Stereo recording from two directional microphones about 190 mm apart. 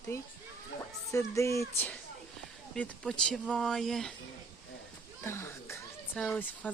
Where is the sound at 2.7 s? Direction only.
5° left (ahead or behind).